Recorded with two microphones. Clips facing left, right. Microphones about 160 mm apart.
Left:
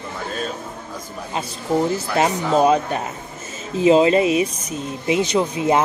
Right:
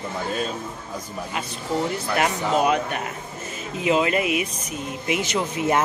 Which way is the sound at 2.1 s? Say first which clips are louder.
Left 4 dB; 30° left (ahead or behind).